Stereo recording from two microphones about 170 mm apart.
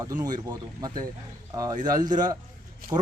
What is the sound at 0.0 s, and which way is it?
Speech, 25° right (ahead or behind).